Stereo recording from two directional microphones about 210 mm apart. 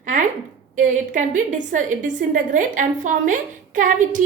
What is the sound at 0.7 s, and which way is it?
A woman's voice, 35° right (ahead or behind).